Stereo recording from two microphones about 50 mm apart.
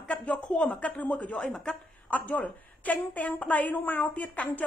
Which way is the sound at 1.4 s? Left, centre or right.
Centre.